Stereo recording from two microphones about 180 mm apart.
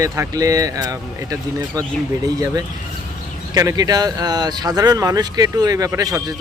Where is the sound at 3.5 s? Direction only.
20° right (ahead or behind).